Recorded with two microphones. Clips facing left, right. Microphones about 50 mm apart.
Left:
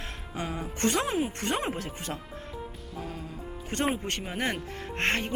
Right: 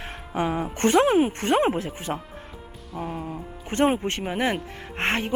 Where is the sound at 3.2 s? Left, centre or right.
Right.